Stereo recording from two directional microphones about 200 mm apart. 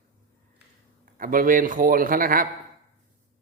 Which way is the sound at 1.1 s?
45° right (ahead or behind).